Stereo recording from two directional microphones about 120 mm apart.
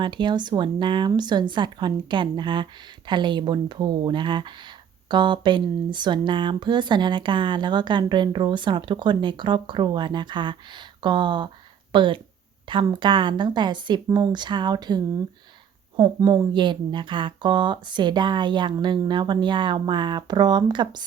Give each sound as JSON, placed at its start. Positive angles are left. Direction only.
{"t": 0.0, "sound": "speech", "side_deg": -40}